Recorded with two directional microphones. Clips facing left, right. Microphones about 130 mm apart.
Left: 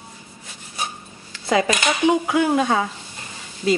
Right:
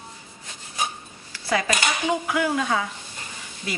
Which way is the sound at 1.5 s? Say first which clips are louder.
Left 4 dB; 25° left (ahead or behind).